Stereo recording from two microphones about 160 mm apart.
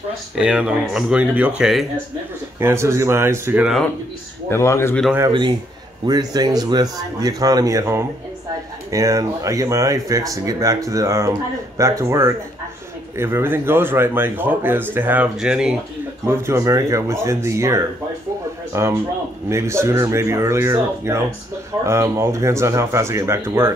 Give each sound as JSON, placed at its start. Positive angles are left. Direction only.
{"t": 0.4, "sound": "speech", "side_deg": -5}
{"t": 2.6, "sound": "speech", "side_deg": -15}
{"t": 4.5, "sound": "speech", "side_deg": 15}
{"t": 6.0, "sound": "speech", "side_deg": -25}
{"t": 16.3, "sound": "speech", "side_deg": -15}